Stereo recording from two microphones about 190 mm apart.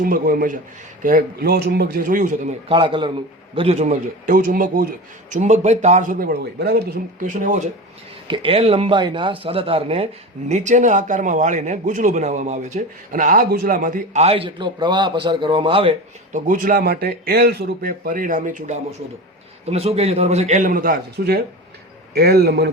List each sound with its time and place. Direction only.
0.0 s a man's voice: 45° right (ahead or behind)
7.3 s a man's voice: 40° right (ahead or behind)
8.3 s a man's voice: 30° right (ahead or behind)
16.5 s a man's voice: 45° right (ahead or behind)